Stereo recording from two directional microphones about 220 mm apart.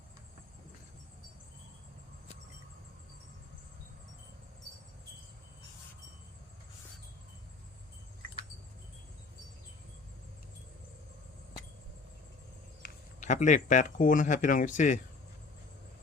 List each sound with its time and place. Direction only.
12.8 s speech: 35° left (ahead or behind)